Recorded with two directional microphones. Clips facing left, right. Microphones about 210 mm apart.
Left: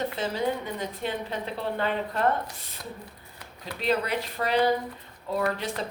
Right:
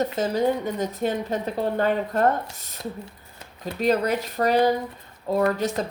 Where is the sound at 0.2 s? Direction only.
45° right (ahead or behind).